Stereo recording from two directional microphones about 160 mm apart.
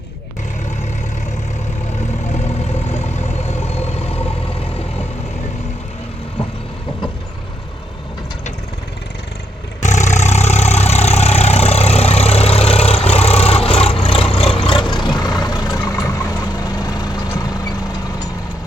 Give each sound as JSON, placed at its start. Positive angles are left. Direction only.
{"t": 2.3, "sound": "vehicle", "side_deg": 45}
{"t": 9.8, "sound": "vehicle", "side_deg": 50}